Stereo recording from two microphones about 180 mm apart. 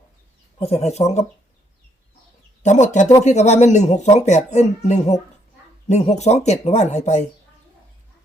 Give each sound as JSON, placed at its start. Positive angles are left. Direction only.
{"t": 0.6, "sound": "speech", "side_deg": 35}
{"t": 2.6, "sound": "speech", "side_deg": 40}